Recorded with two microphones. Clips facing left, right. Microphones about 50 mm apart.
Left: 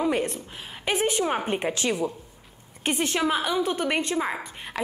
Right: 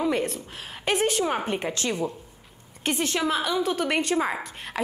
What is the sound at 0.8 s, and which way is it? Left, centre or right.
A woman's voice, centre.